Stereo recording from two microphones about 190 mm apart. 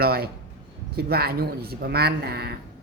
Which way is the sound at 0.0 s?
55° right (ahead or behind).